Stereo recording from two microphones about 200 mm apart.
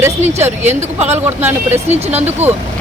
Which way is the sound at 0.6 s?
35° right (ahead or behind).